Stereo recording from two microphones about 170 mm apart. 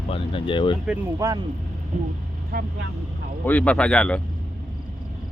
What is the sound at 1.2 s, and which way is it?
Speech, 20° right (ahead or behind).